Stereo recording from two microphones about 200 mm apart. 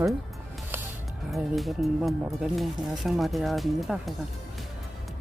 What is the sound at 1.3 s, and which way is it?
Speech, centre (ahead or behind).